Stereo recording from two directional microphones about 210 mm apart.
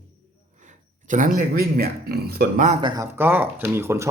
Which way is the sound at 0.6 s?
35° right (ahead or behind).